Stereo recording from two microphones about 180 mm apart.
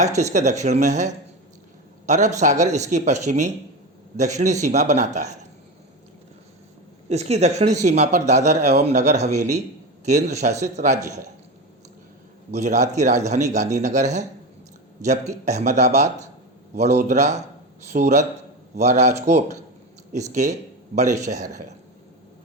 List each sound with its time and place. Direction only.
0.0 s a man's voice: 40° right (ahead or behind)
7.1 s a man's voice: 35° right (ahead or behind)
12.5 s a man's voice: 40° right (ahead or behind)
15.4 s a man's voice: 40° right (ahead or behind)